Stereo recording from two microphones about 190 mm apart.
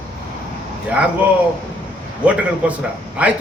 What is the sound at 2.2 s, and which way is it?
A man's voice, 5° right (ahead or behind).